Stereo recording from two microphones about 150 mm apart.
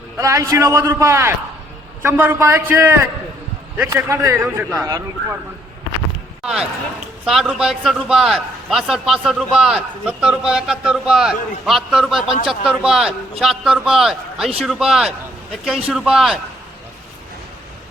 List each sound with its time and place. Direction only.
0.2 s a man's voice: 20° right (ahead or behind)
6.4 s a man's voice: 5° right (ahead or behind)